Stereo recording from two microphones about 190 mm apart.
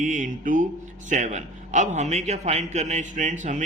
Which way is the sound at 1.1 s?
40° right (ahead or behind).